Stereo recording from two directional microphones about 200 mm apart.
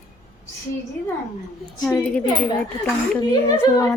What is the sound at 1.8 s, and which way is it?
Speech, 10° left (ahead or behind).